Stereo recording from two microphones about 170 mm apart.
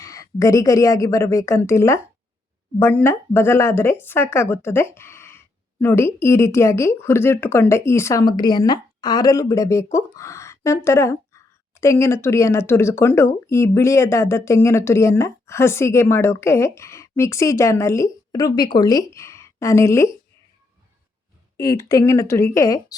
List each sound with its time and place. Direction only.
0.0 s a woman's voice: 20° left (ahead or behind)
21.6 s a woman's voice: 20° left (ahead or behind)